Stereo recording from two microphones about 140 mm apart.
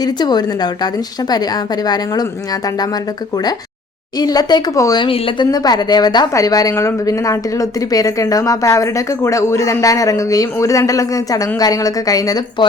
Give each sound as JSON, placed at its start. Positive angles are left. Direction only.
{"t": 0.0, "sound": "a woman's voice", "side_deg": 30}
{"t": 4.2, "sound": "a woman's voice", "side_deg": 30}
{"t": 5.0, "sound": "speech", "side_deg": 40}
{"t": 5.5, "sound": "a woman's voice", "side_deg": 30}